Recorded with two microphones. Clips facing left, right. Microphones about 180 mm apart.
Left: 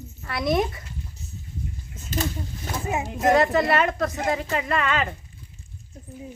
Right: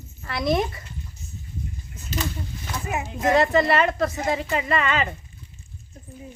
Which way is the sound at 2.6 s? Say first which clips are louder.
Left 2 dB; 30° left (ahead or behind).